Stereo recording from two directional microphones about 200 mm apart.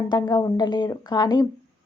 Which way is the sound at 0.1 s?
20° left (ahead or behind).